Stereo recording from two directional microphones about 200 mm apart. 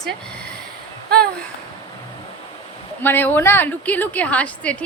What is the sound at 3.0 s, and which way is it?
A woman's voice, 10° left (ahead or behind).